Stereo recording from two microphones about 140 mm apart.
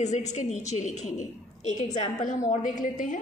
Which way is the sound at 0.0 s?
55° left (ahead or behind).